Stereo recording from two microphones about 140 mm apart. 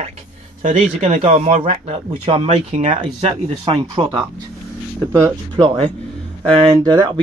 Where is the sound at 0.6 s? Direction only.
50° right (ahead or behind).